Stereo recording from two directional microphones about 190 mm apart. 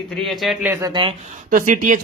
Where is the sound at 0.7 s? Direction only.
20° right (ahead or behind).